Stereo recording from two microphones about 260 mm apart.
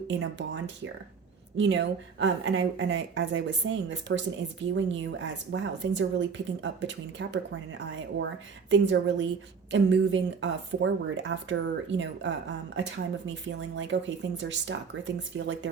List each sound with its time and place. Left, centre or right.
0.1 s speech: right